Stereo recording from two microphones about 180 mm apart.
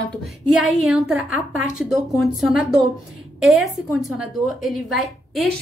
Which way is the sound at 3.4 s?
Centre (ahead or behind).